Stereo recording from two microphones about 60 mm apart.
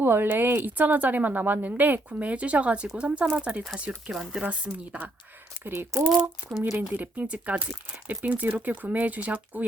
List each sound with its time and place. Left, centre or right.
0.0 s a woman's voice: right
4.1 s speech: centre
4.4 s a woman's voice: right
5.6 s a woman's voice: right